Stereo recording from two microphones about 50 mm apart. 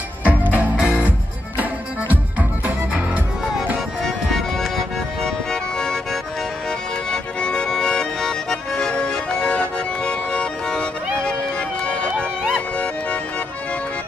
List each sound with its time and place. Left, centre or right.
0.2 s music: right
4.0 s music: centre
7.1 s accordion: centre
11.8 s music: left